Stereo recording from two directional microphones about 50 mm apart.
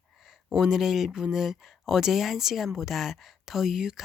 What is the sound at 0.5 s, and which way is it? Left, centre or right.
A woman's voice, centre.